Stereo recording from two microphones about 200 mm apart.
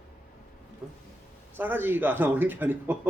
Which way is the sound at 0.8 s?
5° right (ahead or behind).